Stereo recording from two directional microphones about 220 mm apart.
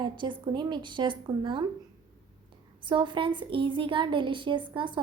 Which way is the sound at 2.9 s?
20° right (ahead or behind).